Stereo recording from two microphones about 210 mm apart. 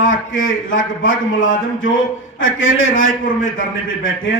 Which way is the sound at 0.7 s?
65° left (ahead or behind).